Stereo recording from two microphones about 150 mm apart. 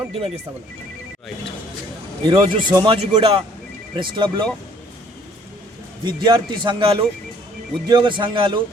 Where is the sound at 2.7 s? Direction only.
25° right (ahead or behind).